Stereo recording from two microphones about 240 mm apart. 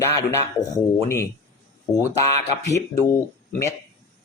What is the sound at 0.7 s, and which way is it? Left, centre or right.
Speech, centre.